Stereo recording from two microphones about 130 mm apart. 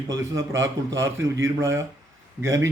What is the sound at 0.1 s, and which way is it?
A man's voice, 25° right (ahead or behind).